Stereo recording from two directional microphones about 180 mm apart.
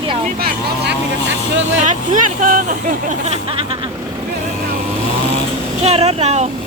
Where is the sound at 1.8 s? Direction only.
45° right (ahead or behind).